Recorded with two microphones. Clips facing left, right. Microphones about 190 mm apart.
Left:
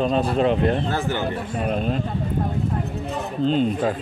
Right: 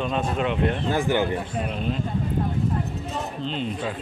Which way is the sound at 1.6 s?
45° left (ahead or behind).